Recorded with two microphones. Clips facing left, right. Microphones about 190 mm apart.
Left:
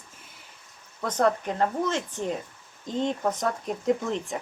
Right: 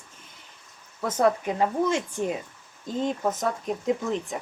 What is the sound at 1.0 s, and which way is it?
Speech, 10° right (ahead or behind).